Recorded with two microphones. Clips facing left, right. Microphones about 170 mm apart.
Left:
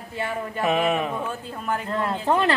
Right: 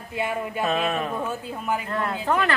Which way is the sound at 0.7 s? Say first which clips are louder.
Left 4 dB; 15° left (ahead or behind).